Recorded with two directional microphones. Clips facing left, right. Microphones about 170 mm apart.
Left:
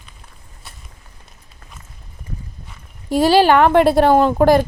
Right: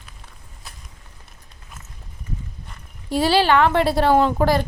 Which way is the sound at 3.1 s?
45° left (ahead or behind).